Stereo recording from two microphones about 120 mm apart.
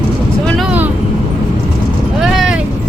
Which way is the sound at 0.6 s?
15° right (ahead or behind).